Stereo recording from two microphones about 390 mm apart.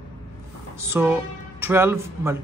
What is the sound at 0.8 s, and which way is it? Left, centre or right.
A man's voice, centre.